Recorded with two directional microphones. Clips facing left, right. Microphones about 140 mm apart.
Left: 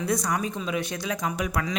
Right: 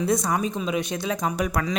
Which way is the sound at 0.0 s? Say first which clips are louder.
Right 3 dB; 25° right (ahead or behind).